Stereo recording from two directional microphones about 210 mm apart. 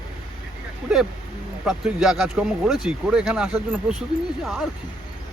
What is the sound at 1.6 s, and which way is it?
Speech, centre (ahead or behind).